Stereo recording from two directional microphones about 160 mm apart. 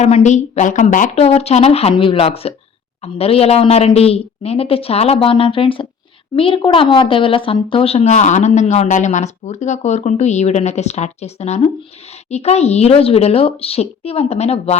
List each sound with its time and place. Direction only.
0.0 s a woman's voice: 45° left (ahead or behind)